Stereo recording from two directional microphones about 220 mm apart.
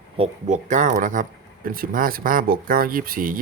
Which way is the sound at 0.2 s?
35° right (ahead or behind).